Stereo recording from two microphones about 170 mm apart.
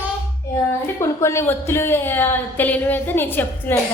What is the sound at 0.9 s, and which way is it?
A woman's voice, 15° left (ahead or behind).